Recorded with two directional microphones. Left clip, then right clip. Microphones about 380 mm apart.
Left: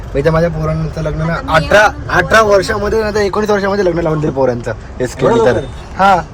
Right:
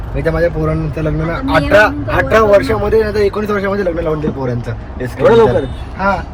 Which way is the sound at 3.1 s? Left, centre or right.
Centre.